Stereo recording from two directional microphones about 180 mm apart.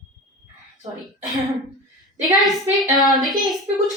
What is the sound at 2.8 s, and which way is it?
Speech, 20° right (ahead or behind).